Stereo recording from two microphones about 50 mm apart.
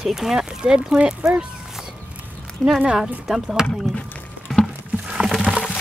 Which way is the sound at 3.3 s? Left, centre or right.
Centre.